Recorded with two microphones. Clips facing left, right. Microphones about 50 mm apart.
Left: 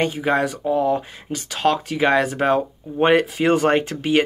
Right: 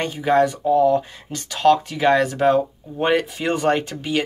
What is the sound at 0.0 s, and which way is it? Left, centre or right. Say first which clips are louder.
Speech: right 2 dB; centre.